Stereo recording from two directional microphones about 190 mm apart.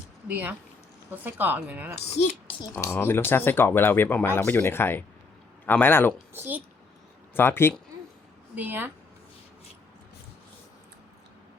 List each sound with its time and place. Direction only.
0.3 s speech: 10° right (ahead or behind)
2.0 s speech: 35° left (ahead or behind)
2.7 s speech: 10° left (ahead or behind)
6.3 s speech: 10° right (ahead or behind)
7.3 s speech: 10° left (ahead or behind)
8.5 s speech: 10° right (ahead or behind)